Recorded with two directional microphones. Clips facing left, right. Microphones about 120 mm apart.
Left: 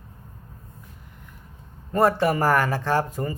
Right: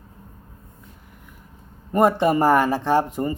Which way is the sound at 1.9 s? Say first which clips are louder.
Right 2 dB; 20° right (ahead or behind).